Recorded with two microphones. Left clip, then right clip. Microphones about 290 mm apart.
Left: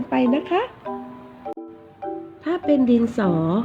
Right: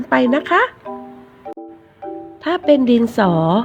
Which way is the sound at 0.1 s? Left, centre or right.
Right.